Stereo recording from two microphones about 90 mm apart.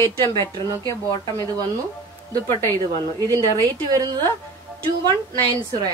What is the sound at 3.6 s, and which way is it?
Speech, 45° right (ahead or behind).